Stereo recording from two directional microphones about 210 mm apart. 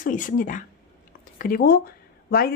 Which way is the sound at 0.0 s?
40° left (ahead or behind).